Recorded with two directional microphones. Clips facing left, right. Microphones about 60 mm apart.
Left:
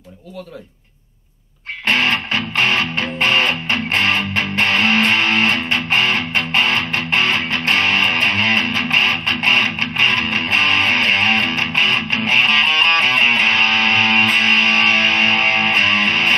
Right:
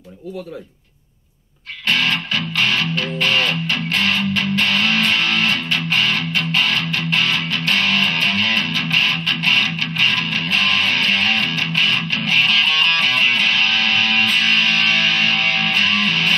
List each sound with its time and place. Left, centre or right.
1.9 s music: left